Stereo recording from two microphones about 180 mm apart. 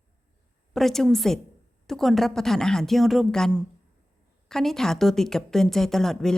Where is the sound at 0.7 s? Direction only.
Centre (ahead or behind).